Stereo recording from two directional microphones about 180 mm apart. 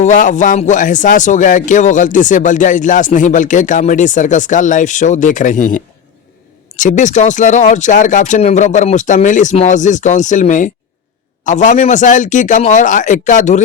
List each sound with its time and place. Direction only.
0.0 s speech: 45° left (ahead or behind)